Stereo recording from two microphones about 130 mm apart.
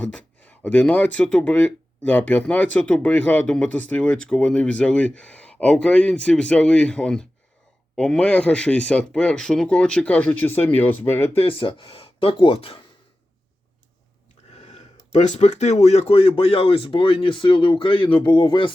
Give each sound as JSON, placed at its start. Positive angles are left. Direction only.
{"t": 0.0, "sound": "speech", "side_deg": 10}
{"t": 11.3, "sound": "speech", "side_deg": 45}
{"t": 14.6, "sound": "speech", "side_deg": 60}